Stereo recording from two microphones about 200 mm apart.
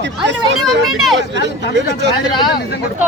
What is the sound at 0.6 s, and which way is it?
Speech, centre (ahead or behind).